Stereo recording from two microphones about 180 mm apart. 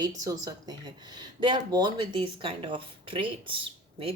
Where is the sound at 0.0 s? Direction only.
20° right (ahead or behind).